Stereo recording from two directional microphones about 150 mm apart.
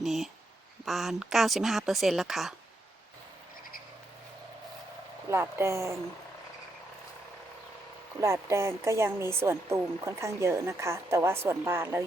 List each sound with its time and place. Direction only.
0.0 s speech: centre (ahead or behind)
5.3 s speech: 15° right (ahead or behind)
8.2 s speech: 20° right (ahead or behind)